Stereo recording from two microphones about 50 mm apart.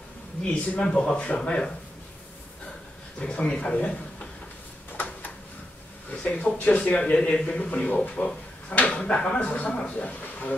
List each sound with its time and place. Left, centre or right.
0.4 s a man's voice: left
3.2 s a man's voice: left
4.9 s a sound: left
6.1 s a man's voice: left